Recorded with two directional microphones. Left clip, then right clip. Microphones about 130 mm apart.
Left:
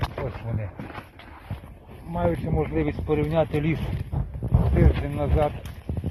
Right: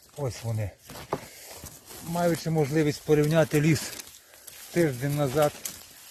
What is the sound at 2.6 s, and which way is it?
Speech, 65° right (ahead or behind).